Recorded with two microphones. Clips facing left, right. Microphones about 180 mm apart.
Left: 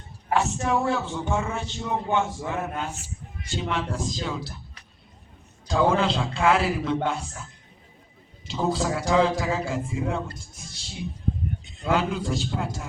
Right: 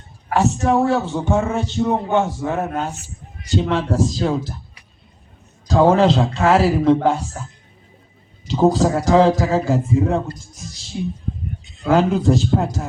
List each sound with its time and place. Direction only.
0.3 s a man's voice: 40° right (ahead or behind)
5.6 s a man's voice: 40° right (ahead or behind)
8.4 s a man's voice: 40° right (ahead or behind)
11.9 s a man's voice: 40° right (ahead or behind)